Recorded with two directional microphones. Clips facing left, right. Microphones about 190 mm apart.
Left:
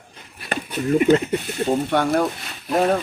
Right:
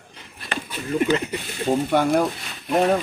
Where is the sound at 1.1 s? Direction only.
50° left (ahead or behind).